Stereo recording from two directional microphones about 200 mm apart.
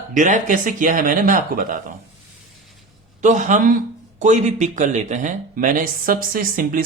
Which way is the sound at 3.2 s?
40° right (ahead or behind).